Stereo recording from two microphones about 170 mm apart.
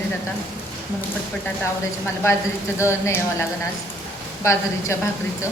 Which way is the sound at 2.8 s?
15° left (ahead or behind).